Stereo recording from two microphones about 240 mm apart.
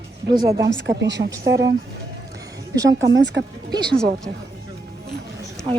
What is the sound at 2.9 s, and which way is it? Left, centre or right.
Speech, right.